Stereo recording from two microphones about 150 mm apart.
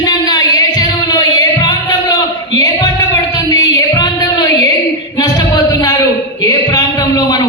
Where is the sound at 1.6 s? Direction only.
30° left (ahead or behind).